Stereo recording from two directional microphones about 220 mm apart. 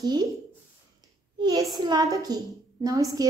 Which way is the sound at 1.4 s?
15° right (ahead or behind).